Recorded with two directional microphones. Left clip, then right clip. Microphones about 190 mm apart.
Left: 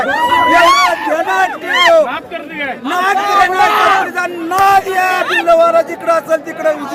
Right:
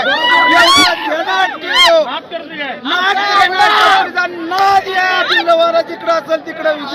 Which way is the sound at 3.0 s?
Centre (ahead or behind).